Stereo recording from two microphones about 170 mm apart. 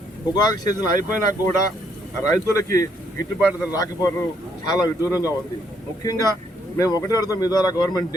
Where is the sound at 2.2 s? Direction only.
20° left (ahead or behind).